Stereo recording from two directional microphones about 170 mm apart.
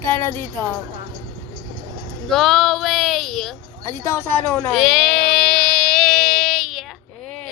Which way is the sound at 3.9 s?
15° left (ahead or behind).